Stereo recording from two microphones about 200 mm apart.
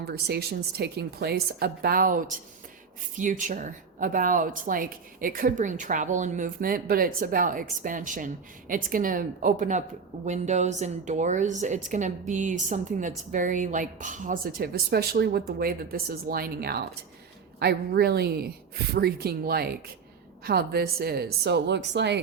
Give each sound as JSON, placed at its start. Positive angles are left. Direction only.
{"t": 0.0, "sound": "speech", "side_deg": -55}